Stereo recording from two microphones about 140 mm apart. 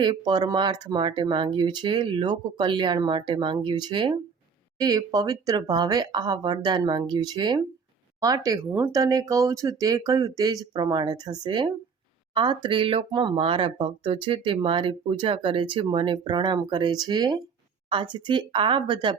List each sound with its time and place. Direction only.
0.0 s speech: 35° right (ahead or behind)
8.7 s speech: 15° right (ahead or behind)
9.0 s speech: 25° right (ahead or behind)